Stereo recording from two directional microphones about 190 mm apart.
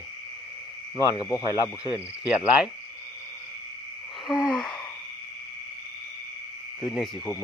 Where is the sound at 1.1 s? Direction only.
15° left (ahead or behind).